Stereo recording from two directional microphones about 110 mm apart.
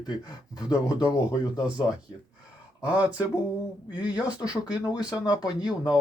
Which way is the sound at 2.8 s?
10° right (ahead or behind).